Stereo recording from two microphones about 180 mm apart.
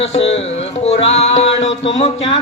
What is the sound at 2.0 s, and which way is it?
Speech, 35° left (ahead or behind).